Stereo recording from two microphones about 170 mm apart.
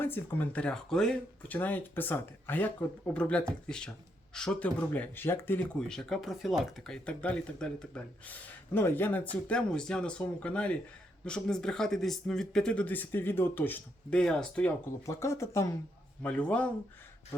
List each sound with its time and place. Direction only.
0.0 s speech: 10° left (ahead or behind)
15.0 s speech: 15° left (ahead or behind)